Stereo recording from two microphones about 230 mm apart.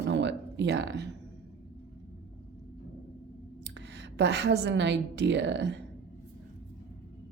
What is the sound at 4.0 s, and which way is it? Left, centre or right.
A woman's voice, right.